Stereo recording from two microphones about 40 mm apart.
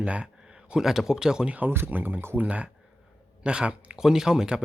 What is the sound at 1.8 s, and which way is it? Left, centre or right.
Speech, right.